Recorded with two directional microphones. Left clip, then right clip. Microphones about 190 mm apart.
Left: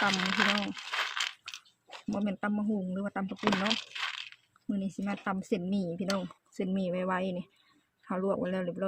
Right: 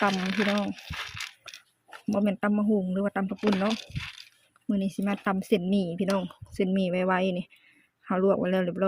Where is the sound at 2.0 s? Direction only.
25° right (ahead or behind).